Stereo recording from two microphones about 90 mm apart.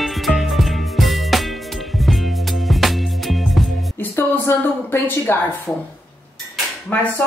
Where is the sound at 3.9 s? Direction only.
25° left (ahead or behind).